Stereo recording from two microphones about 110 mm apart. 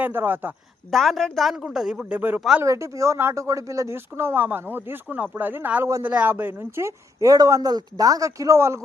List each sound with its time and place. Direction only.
0.0 s speech: 20° right (ahead or behind)
0.9 s speech: centre (ahead or behind); by 2.4 s 15° right (ahead or behind)
2.6 s speech: 30° right (ahead or behind)